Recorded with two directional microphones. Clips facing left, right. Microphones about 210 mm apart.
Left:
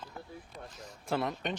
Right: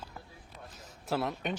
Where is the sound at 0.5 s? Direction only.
5° right (ahead or behind).